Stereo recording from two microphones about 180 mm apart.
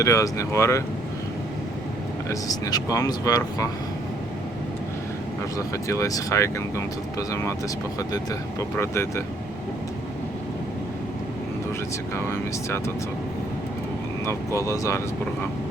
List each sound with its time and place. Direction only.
0.0 s speech: 15° left (ahead or behind)
2.3 s speech: 20° left (ahead or behind)
5.5 s speech: 20° left (ahead or behind)
8.8 s speech: 15° left (ahead or behind)
12.1 s speech: 15° left (ahead or behind)
14.3 s speech: 15° left (ahead or behind)